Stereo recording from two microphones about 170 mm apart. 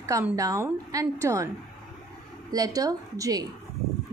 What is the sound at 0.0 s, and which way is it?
A woman's voice, 20° right (ahead or behind).